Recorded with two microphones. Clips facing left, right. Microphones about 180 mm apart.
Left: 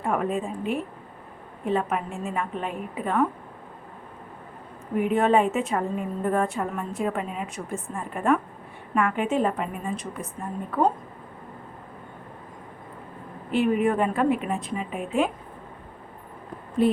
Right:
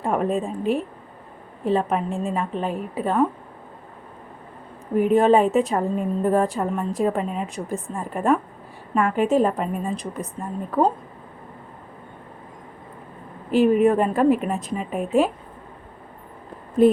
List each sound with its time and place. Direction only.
0.0 s a woman's voice: 35° right (ahead or behind)
4.9 s a woman's voice: 35° right (ahead or behind)
13.5 s a woman's voice: 40° right (ahead or behind)
16.8 s speech: 45° right (ahead or behind)